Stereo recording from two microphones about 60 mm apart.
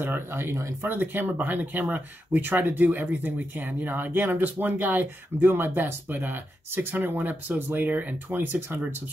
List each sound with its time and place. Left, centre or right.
0.0 s speech: right
0.8 s speech: right